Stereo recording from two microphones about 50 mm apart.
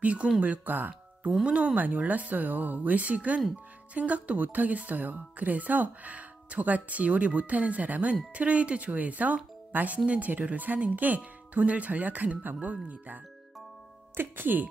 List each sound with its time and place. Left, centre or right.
0.0 s speech: right
1.4 s speech: right
1.8 s speech: right
14.1 s speech: right